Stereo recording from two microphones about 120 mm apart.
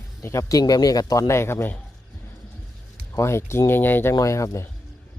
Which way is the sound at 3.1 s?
20° left (ahead or behind).